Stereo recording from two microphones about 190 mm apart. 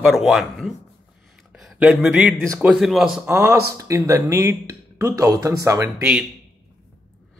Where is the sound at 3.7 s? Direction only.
15° right (ahead or behind).